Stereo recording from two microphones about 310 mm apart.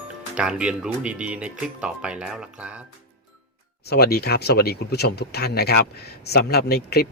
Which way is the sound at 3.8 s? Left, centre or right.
Left.